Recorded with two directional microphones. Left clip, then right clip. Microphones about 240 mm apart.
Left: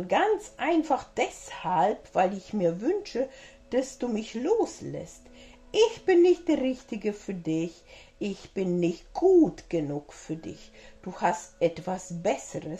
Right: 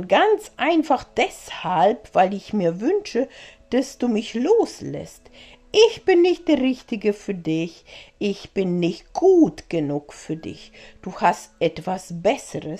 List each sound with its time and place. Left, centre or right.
0.0 s speech: right